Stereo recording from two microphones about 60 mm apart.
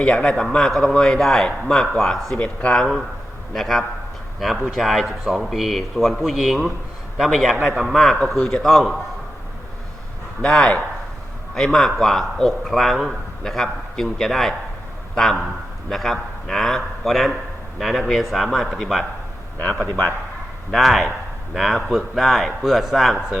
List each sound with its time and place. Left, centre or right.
0.0 s a man's voice: centre
10.5 s a man's voice: centre
19.5 s a man's voice: left
20.7 s a man's voice: centre